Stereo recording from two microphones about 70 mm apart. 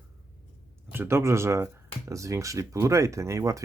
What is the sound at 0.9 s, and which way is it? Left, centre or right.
Speech, right.